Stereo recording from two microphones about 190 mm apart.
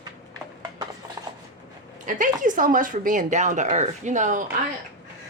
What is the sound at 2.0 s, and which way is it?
Speech, 45° right (ahead or behind).